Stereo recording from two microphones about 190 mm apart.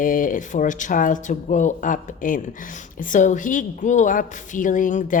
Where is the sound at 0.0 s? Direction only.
45° left (ahead or behind).